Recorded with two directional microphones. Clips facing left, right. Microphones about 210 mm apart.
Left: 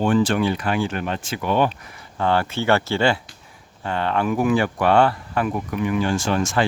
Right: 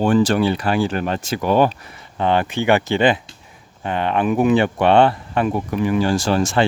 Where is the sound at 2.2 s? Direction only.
20° right (ahead or behind).